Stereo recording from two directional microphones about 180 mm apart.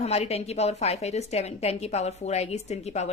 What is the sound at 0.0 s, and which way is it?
A woman's voice, 35° left (ahead or behind).